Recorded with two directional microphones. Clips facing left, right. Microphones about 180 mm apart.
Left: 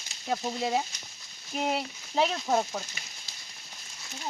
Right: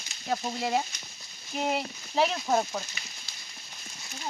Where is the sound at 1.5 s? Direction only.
Centre (ahead or behind).